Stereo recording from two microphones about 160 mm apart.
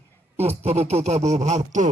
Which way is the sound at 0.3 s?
40° right (ahead or behind).